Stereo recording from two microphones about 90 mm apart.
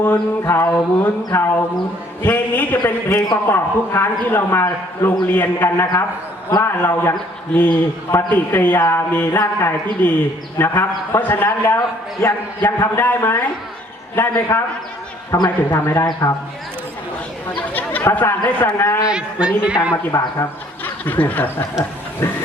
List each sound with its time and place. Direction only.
0.0 s a man's voice: 25° left (ahead or behind)
3.2 s a man's voice: 35° left (ahead or behind)
18.1 s a man's voice: 20° left (ahead or behind)
19.0 s a man's voice: 10° right (ahead or behind)
20.1 s a man's voice: 30° left (ahead or behind)